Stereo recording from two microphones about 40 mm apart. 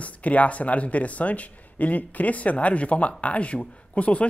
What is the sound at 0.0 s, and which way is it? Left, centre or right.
Speech, left.